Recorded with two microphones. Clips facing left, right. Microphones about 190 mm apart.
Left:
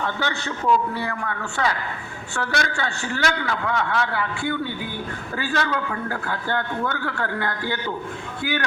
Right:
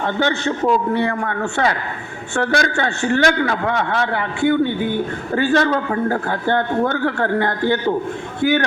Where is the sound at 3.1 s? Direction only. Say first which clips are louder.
Right 9 dB; 45° right (ahead or behind).